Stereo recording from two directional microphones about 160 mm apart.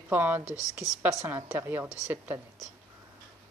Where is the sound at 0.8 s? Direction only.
20° left (ahead or behind).